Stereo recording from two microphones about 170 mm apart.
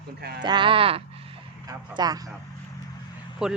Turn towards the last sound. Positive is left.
turn(degrees=-5)  # may be behind; listen again after turning